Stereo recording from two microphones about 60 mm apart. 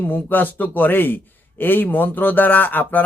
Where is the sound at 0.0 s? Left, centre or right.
Left.